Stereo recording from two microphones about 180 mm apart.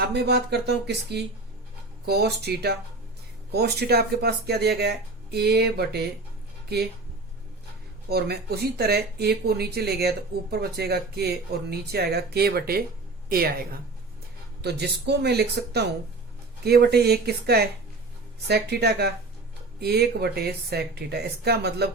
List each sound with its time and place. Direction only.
0.1 s speech: 65° right (ahead or behind)
8.1 s a woman's voice: 60° right (ahead or behind)